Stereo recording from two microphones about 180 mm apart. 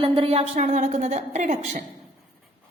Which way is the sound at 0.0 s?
30° right (ahead or behind).